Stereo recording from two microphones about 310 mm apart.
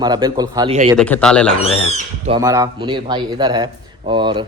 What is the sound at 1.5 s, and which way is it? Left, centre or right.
Speech, centre.